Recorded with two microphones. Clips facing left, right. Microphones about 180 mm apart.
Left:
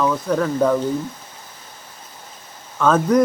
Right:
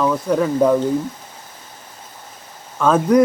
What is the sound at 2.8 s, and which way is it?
Speech, 5° right (ahead or behind).